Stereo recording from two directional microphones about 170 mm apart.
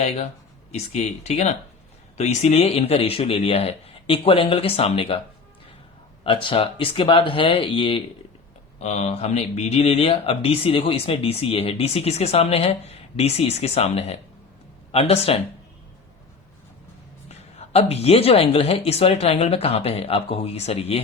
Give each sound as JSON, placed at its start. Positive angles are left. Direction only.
{"t": 0.7, "sound": "speech", "side_deg": 40}
{"t": 6.2, "sound": "speech", "side_deg": 30}
{"t": 17.2, "sound": "speech", "side_deg": 35}